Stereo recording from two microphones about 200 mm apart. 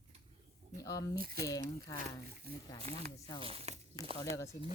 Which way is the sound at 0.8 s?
15° left (ahead or behind).